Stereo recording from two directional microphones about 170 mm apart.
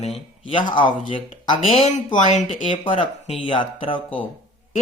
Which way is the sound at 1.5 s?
40° left (ahead or behind).